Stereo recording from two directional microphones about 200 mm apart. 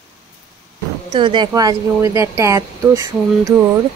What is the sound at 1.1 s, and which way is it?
A woman's voice, 25° right (ahead or behind).